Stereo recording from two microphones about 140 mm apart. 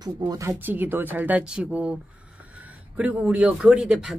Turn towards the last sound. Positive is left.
turn(degrees=-5)  # may be behind; listen again after turning